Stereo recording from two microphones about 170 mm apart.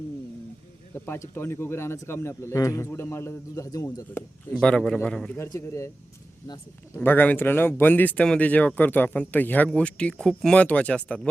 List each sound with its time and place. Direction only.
0.9 s speech: 10° left (ahead or behind)
4.6 s a man's voice: 5° left (ahead or behind)
5.4 s speech: 15° left (ahead or behind)